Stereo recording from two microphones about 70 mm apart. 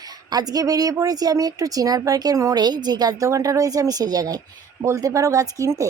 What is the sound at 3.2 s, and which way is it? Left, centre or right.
Speech, right.